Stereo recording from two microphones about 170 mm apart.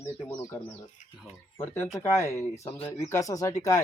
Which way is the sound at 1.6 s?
15° left (ahead or behind).